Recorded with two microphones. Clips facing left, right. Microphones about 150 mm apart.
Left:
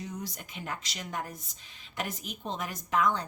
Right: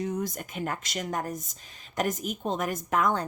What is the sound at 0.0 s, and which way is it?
A woman's voice, 50° right (ahead or behind).